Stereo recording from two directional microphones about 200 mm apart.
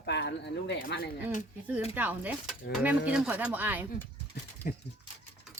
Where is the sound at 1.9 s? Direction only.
10° right (ahead or behind).